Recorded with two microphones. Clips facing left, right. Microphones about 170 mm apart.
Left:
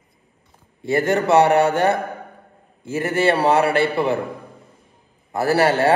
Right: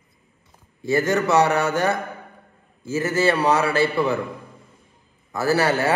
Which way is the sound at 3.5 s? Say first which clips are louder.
Left 3 dB; 60° left (ahead or behind).